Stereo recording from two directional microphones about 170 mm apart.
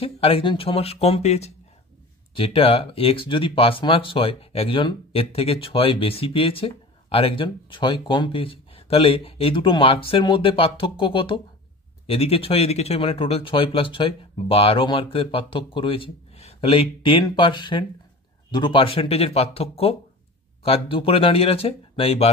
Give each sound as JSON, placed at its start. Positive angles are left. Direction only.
{"t": 0.0, "sound": "speech", "side_deg": 35}